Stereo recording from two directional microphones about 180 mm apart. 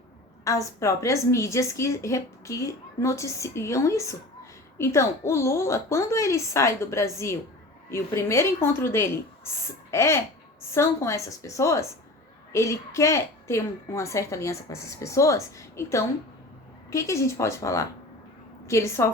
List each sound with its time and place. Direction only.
0.4 s a woman's voice: 15° left (ahead or behind)